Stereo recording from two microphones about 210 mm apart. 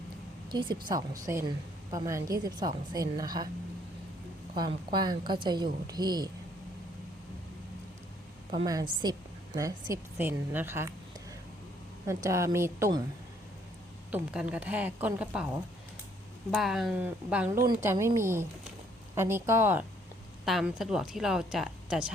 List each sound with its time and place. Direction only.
0.5 s a woman's voice: 20° right (ahead or behind)
4.5 s a woman's voice: 20° right (ahead or behind)
8.5 s a woman's voice: 20° right (ahead or behind)
12.0 s a woman's voice: 15° right (ahead or behind)
14.1 s a woman's voice: 5° right (ahead or behind)
16.5 s a woman's voice: centre (ahead or behind)
20.4 s a woman's voice: centre (ahead or behind)